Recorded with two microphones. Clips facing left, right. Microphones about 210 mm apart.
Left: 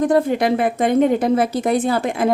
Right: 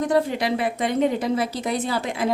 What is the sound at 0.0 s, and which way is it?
A woman's voice, 50° left (ahead or behind).